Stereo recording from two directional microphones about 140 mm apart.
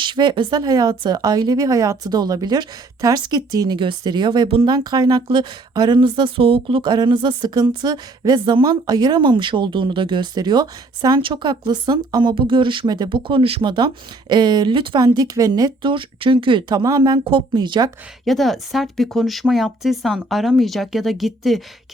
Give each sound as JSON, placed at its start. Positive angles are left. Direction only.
{"t": 0.0, "sound": "speech", "side_deg": -35}
{"t": 18.3, "sound": "speech", "side_deg": 0}